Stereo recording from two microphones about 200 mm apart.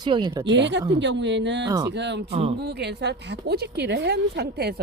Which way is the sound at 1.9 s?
60° right (ahead or behind).